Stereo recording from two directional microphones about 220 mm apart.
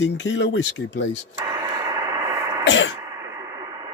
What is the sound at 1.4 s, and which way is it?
Radio, 15° right (ahead or behind).